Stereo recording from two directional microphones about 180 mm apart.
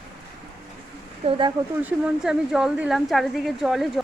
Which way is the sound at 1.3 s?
25° right (ahead or behind).